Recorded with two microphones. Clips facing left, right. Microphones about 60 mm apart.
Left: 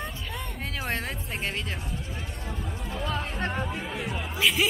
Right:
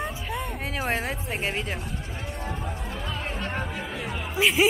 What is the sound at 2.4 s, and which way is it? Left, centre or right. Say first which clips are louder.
Music: right 2 dB; right.